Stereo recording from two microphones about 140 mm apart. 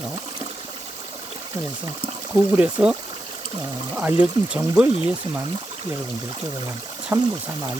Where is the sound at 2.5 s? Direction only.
10° right (ahead or behind).